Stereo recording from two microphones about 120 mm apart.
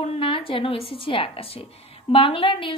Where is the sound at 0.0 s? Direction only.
50° left (ahead or behind).